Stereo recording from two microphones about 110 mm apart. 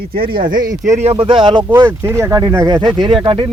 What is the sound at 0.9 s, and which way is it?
Speech, 80° right.